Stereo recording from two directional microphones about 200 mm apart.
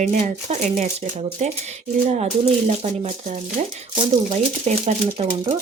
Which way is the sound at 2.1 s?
35° right (ahead or behind).